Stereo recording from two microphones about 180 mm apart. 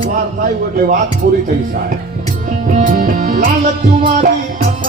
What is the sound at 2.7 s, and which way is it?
Music, 45° right (ahead or behind).